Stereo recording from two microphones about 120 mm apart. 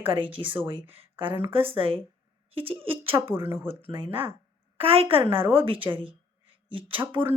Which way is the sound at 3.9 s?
45° right (ahead or behind).